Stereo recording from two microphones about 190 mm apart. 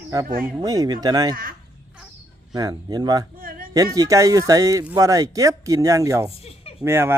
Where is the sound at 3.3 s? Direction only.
50° right (ahead or behind).